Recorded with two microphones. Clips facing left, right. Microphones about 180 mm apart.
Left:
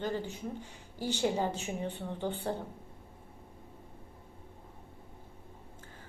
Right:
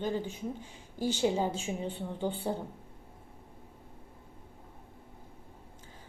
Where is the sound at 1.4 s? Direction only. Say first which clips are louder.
Right 1 dB; 10° right (ahead or behind).